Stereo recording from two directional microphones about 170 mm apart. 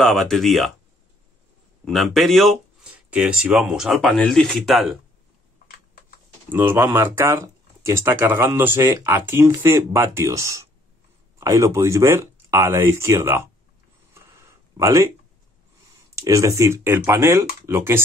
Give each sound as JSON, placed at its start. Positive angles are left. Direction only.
{"t": 0.0, "sound": "speech", "side_deg": 0}
{"t": 1.9, "sound": "speech", "side_deg": 0}
{"t": 5.7, "sound": "typing", "side_deg": 60}
{"t": 6.5, "sound": "speech", "side_deg": -10}
{"t": 14.1, "sound": "a sound", "side_deg": -20}
{"t": 16.2, "sound": "speech", "side_deg": -20}